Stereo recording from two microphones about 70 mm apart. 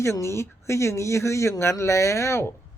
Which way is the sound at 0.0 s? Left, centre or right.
Left.